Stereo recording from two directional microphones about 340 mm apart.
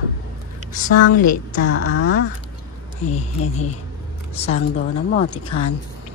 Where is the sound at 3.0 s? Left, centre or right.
Centre.